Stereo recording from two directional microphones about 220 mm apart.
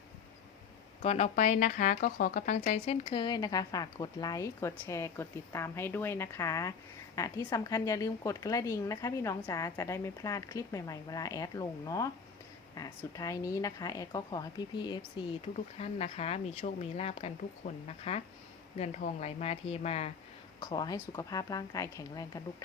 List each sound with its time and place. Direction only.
1.0 s speech: 30° left (ahead or behind)
20.6 s speech: 15° left (ahead or behind)